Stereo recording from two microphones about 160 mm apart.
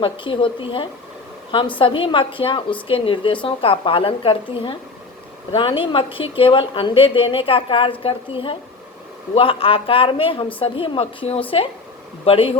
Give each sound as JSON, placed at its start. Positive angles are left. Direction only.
{"t": 0.0, "sound": "a woman's voice", "side_deg": 30}